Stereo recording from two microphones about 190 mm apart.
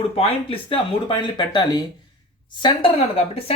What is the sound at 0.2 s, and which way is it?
Speech, 30° left (ahead or behind).